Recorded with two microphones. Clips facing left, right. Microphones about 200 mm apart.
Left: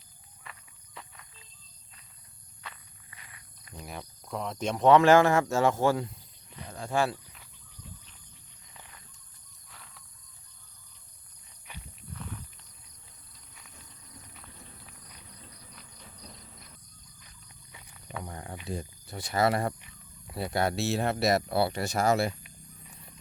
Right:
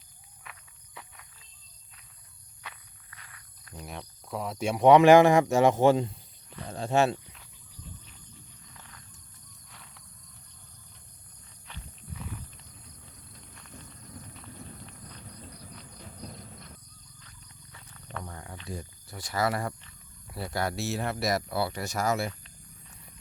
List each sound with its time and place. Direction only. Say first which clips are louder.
0.9 s cricket: even; 5° right (ahead or behind)
3.2 s walk: even; 10° left (ahead or behind)
3.8 s speech: even; centre (ahead or behind); by 7.2 s 25° right (ahead or behind)
9.6 s wild animals: left 1 dB; centre (ahead or behind)
11.7 s walk: even; 10° left (ahead or behind)
12.1 s a sound: right 1 dB; 5° right (ahead or behind)
17.2 s wild animals: right 3 dB; 15° left (ahead or behind)
19.8 s speech: left 2 dB; 20° left (ahead or behind)